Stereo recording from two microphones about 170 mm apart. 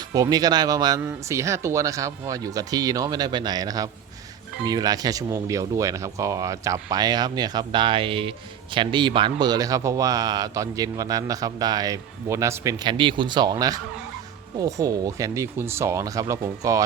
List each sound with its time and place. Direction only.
0.1 s a man's voice: 20° right (ahead or behind)